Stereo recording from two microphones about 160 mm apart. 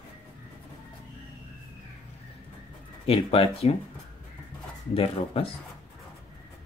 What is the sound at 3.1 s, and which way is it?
Speech, 40° left (ahead or behind).